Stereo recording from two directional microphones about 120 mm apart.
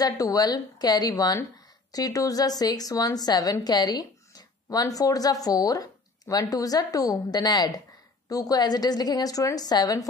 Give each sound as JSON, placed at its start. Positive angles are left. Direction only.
{"t": 0.0, "sound": "speech", "side_deg": 30}